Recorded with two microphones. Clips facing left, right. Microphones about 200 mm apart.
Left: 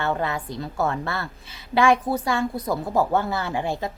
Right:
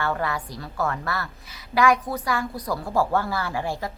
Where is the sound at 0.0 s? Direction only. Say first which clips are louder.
Left 1 dB; 20° left (ahead or behind).